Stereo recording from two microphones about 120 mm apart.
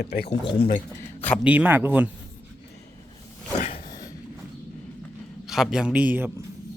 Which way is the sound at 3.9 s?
30° left (ahead or behind).